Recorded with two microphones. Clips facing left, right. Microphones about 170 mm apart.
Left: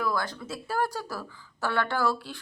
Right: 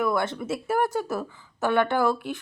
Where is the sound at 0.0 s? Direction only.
25° right (ahead or behind).